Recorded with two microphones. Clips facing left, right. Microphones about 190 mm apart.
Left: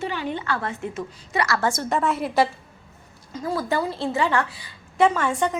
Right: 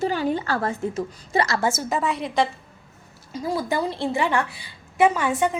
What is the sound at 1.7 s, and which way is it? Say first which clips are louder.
Speech: left 1 dB; 5° right (ahead or behind).